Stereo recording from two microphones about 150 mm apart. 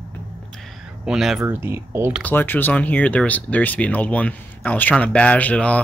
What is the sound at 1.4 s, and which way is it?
Speech, 15° right (ahead or behind).